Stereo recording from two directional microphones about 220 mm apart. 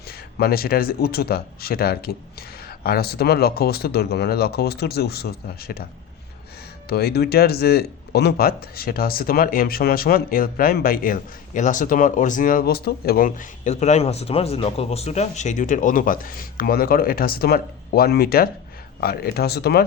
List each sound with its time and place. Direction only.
0.1 s speech: 45° left (ahead or behind)
6.8 s speech: 45° left (ahead or behind)